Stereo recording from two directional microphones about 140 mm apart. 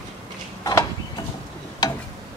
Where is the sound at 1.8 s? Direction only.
25° left (ahead or behind).